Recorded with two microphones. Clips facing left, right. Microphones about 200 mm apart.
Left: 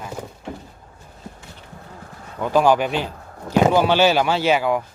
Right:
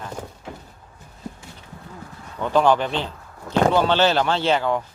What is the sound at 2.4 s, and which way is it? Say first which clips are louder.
Speech: left 1 dB; 10° left (ahead or behind).